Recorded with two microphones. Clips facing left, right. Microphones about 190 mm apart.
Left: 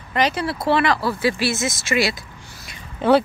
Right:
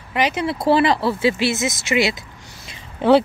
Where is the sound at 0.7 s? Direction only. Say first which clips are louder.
Right 2 dB; 30° right (ahead or behind).